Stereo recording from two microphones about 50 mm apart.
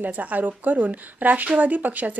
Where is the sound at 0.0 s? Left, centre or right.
Right.